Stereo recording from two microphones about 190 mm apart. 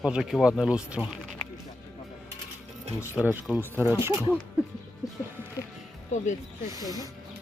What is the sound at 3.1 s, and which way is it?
Speech, 10° right (ahead or behind).